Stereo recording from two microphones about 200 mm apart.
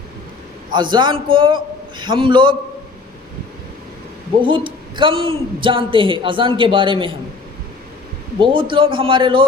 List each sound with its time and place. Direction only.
0.7 s a man's voice: 20° right (ahead or behind)
4.4 s a man's voice: 25° right (ahead or behind)
8.4 s a man's voice: 25° right (ahead or behind)